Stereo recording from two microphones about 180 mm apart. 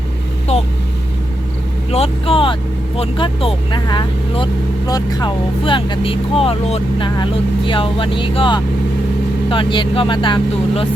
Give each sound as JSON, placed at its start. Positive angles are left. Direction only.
{"t": 1.9, "sound": "speech", "side_deg": 30}